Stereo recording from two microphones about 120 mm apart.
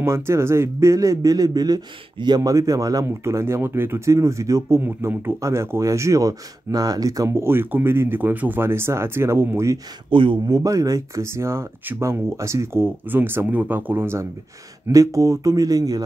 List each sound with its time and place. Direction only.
0.0 s a man's voice: 20° right (ahead or behind)
10.0 s speech: 45° right (ahead or behind)
10.4 s a man's voice: 30° right (ahead or behind)